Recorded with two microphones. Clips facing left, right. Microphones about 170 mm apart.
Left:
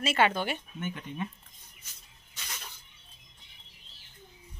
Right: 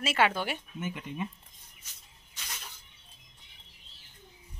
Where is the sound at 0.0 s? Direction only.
5° right (ahead or behind).